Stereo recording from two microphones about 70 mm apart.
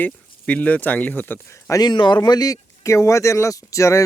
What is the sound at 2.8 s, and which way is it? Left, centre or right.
Speech, left.